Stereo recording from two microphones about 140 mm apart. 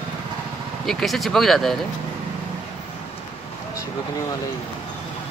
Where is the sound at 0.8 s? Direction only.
Centre (ahead or behind).